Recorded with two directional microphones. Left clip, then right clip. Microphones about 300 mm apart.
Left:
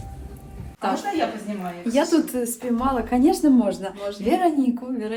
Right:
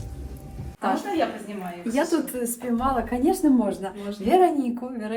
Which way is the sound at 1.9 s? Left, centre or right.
Centre.